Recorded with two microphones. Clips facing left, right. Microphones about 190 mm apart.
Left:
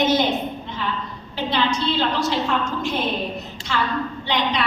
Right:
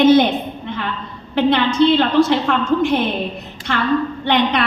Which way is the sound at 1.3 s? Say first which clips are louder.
Right 7 dB; 60° right (ahead or behind).